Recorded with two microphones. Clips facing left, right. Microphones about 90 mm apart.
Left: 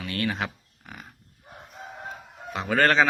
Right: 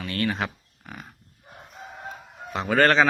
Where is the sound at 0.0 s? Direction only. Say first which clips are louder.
Right 2 dB; 10° left (ahead or behind).